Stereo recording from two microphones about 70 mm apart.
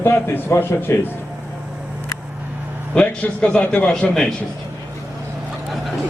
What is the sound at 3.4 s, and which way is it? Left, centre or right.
Speech, centre.